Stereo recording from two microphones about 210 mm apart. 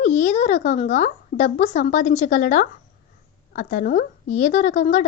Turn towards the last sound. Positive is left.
turn(degrees=35)  # may be behind; listen again after turning